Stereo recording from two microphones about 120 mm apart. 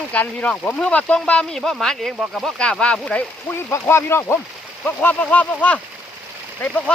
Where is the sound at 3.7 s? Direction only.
20° left (ahead or behind).